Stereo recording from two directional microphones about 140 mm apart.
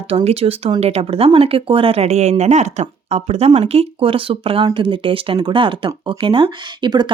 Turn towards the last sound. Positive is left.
turn(degrees=-30)  # may be behind; listen again after turning